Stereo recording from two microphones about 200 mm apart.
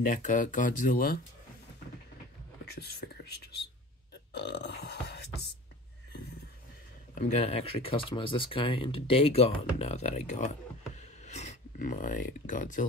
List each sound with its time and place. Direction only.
0.0 s speech: 40° left (ahead or behind)
2.6 s whispering: 55° left (ahead or behind)
4.3 s burping: 60° left (ahead or behind)
7.2 s speech: 35° left (ahead or behind)